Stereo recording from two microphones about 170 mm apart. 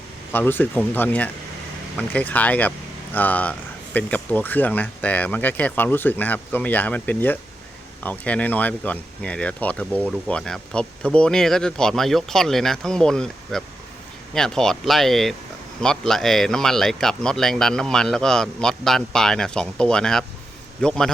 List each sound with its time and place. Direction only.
0.3 s speech: 10° left (ahead or behind)